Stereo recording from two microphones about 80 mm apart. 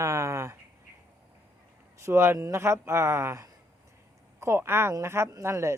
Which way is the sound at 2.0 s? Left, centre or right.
Right.